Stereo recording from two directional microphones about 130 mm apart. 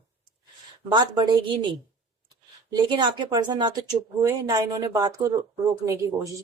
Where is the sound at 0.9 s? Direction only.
35° right (ahead or behind).